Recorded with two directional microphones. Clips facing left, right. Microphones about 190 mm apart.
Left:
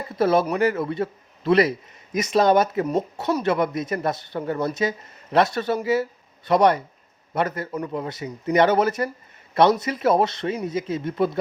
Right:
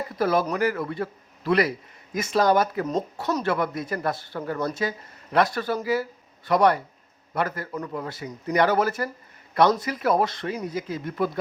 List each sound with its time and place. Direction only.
0.2 s speech: 25° left (ahead or behind)